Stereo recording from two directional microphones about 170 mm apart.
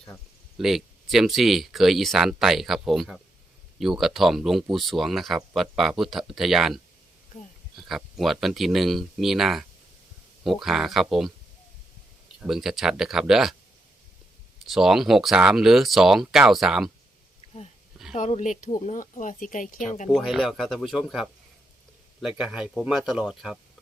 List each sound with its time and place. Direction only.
0.6 s speech: centre (ahead or behind)
7.8 s speech: centre (ahead or behind)
12.4 s speech: centre (ahead or behind)
14.7 s speech: centre (ahead or behind)
18.1 s speech: 40° left (ahead or behind)
20.1 s speech: centre (ahead or behind)